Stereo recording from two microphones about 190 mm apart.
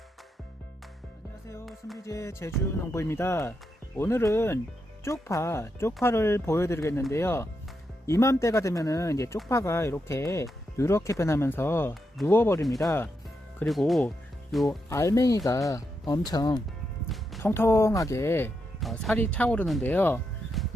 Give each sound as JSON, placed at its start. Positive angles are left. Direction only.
{"t": 2.0, "sound": "speech", "side_deg": 15}
{"t": 13.6, "sound": "speech", "side_deg": 0}
{"t": 14.8, "sound": "speech", "side_deg": 15}
{"t": 18.8, "sound": "speech", "side_deg": 0}